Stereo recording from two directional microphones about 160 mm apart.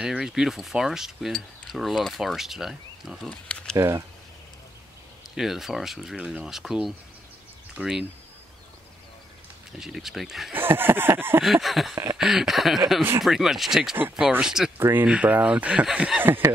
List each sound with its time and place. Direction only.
0.0 s speech: 5° right (ahead or behind)
3.7 s speech: 20° right (ahead or behind)
5.3 s speech: centre (ahead or behind)
9.7 s speech: 5° right (ahead or behind)
10.5 s speech: 15° right (ahead or behind)
11.4 s speech: centre (ahead or behind)
11.9 s a sound: 25° right (ahead or behind)
12.2 s speech: centre (ahead or behind)